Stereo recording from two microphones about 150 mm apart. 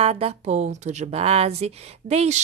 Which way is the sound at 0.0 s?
40° right (ahead or behind).